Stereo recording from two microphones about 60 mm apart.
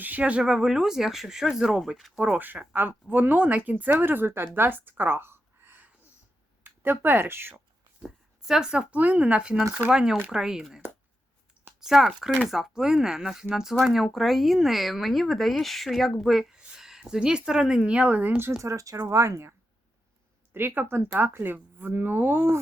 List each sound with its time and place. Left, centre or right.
0.0 s speech: right; by 1.8 s centre
2.4 s speech: right
8.0 s speech: centre
8.9 s speech: right
18.6 s speech: right
19.0 s speech: right
20.5 s speech: right